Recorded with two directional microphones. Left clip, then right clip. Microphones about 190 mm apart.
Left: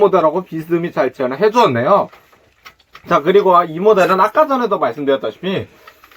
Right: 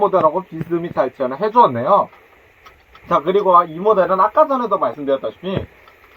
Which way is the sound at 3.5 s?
15° left (ahead or behind).